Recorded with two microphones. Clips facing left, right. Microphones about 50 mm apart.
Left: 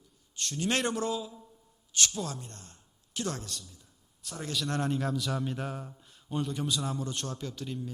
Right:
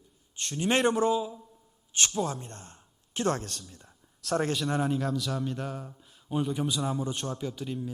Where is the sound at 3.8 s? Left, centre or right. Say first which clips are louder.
Right 5 dB; right.